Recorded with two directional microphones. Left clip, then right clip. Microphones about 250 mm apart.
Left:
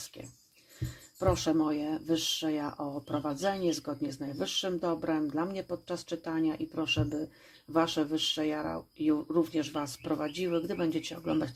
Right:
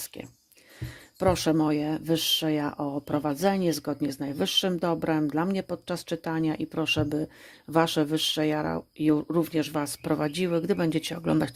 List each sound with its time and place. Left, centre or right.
0.8 s speech: right